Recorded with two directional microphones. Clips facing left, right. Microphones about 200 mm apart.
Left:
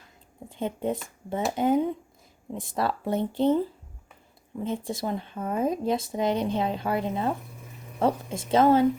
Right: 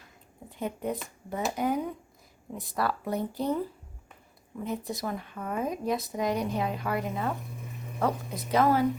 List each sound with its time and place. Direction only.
0.5 s speech: 25° left (ahead or behind)